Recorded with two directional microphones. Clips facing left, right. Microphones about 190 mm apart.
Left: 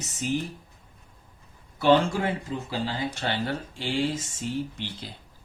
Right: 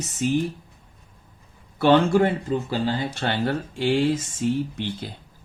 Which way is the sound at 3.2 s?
55° right (ahead or behind).